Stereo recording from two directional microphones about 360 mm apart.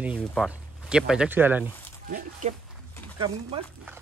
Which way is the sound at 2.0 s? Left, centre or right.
Right.